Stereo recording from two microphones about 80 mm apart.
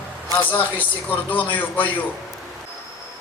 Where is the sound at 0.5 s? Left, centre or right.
Left.